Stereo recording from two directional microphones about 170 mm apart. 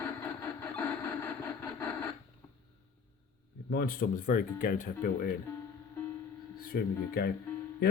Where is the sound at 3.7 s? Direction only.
55° left (ahead or behind).